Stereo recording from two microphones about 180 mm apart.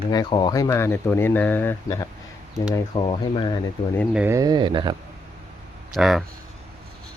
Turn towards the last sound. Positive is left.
turn(degrees=0)  # may be behind; listen again after turning